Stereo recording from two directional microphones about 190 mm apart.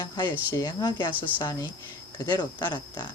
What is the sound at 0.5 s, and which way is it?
Speech, 20° left (ahead or behind).